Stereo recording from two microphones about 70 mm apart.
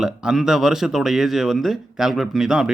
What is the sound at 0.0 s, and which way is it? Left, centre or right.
A man's voice, centre.